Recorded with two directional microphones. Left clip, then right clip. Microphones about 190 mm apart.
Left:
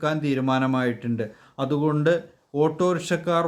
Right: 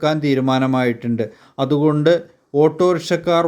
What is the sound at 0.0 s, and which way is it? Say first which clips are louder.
Speech: right 7 dB; 25° right (ahead or behind).